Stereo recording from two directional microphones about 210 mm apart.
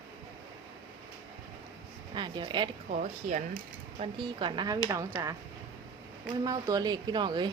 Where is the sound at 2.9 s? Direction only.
35° right (ahead or behind).